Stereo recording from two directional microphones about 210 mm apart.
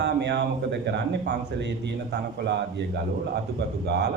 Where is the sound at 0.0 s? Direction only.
55° right (ahead or behind).